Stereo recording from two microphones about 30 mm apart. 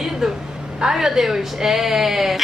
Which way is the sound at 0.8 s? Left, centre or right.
Centre.